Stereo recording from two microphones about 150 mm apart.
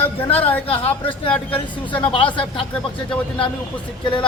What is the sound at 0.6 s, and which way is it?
Speech, 40° left (ahead or behind).